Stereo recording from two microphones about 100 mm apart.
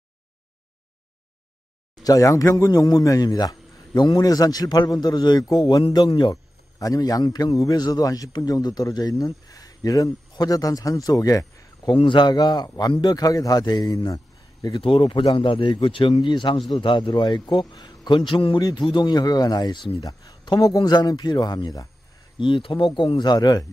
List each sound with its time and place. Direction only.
2.0 s a man's voice: 35° left (ahead or behind)
11.9 s a man's voice: 55° left (ahead or behind)
14.8 s a man's voice: 60° left (ahead or behind)
18.6 s a man's voice: 45° left (ahead or behind)
22.4 s a man's voice: 60° left (ahead or behind); by 23.7 s 40° left (ahead or behind)